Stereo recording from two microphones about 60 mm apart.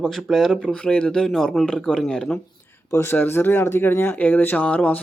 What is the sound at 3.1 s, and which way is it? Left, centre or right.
Speech, left.